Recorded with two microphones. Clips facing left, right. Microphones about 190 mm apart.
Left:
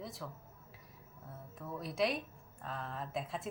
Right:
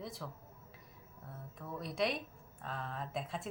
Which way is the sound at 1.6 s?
Centre (ahead or behind).